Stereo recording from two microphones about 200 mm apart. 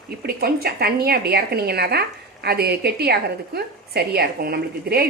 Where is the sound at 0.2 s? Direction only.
50° right (ahead or behind).